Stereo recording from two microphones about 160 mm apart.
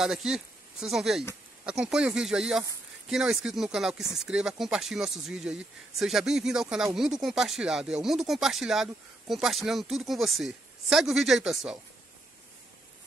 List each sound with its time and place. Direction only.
0.0 s speech: 5° right (ahead or behind)